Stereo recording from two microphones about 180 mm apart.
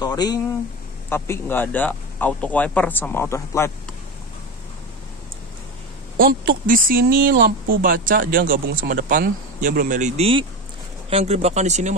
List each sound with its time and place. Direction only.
0.0 s speech: 20° left (ahead or behind)
6.1 s speech: 55° right (ahead or behind)